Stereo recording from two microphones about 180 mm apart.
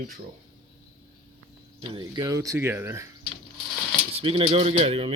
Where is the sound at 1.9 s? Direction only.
25° right (ahead or behind).